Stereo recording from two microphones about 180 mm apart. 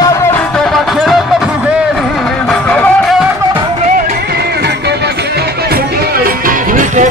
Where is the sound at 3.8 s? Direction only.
45° right (ahead or behind).